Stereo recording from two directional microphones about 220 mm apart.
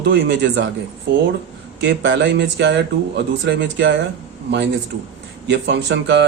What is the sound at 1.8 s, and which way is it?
Speech, 55° right (ahead or behind).